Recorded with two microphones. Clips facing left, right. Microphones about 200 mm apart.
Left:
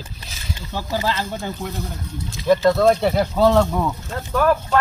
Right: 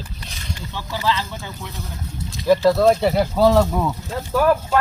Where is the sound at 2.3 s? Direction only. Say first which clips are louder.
Right 1 dB; centre (ahead or behind).